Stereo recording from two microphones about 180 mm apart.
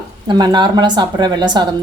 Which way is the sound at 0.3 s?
25° right (ahead or behind).